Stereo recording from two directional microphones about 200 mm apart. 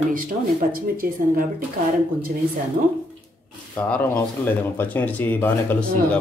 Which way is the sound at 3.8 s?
5° left (ahead or behind).